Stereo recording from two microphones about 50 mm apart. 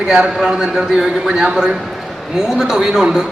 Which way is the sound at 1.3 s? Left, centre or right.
Centre.